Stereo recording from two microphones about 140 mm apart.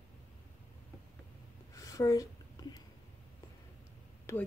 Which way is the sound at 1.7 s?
25° left (ahead or behind).